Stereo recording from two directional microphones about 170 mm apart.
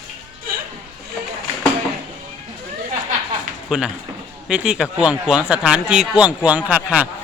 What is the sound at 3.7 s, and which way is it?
Speech, 5° right (ahead or behind).